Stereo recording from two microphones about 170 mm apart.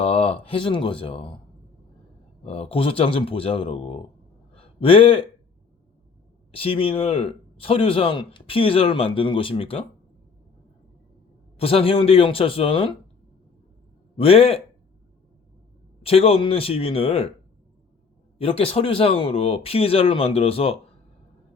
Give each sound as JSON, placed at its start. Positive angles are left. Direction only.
{"t": 0.0, "sound": "speech", "side_deg": 35}
{"t": 2.4, "sound": "a man's voice", "side_deg": 35}
{"t": 6.5, "sound": "a man's voice", "side_deg": 30}
{"t": 11.5, "sound": "a man's voice", "side_deg": 35}
{"t": 14.2, "sound": "a man's voice", "side_deg": 35}
{"t": 16.0, "sound": "a man's voice", "side_deg": 35}
{"t": 18.3, "sound": "a man's voice", "side_deg": 35}